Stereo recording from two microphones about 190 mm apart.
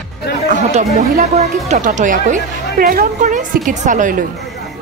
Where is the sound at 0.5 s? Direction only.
40° right (ahead or behind).